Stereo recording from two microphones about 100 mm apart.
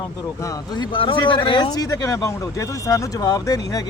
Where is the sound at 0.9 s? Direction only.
60° left (ahead or behind).